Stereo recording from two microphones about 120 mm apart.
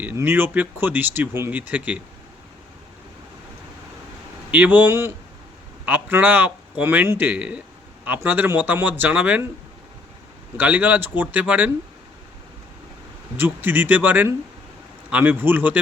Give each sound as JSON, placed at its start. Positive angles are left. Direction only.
{"t": 0.0, "sound": "speech", "side_deg": -15}
{"t": 4.5, "sound": "speech", "side_deg": -15}
{"t": 10.6, "sound": "speech", "side_deg": -15}
{"t": 13.3, "sound": "speech", "side_deg": -15}